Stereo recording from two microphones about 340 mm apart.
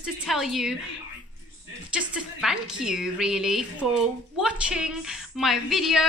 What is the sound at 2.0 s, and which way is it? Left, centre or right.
A woman's voice, centre.